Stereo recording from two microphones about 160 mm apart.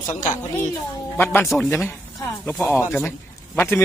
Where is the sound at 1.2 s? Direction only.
15° left (ahead or behind).